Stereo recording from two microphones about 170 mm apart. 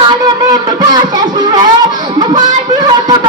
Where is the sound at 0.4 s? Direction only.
25° right (ahead or behind).